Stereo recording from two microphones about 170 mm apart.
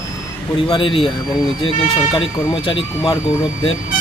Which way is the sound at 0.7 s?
30° left (ahead or behind).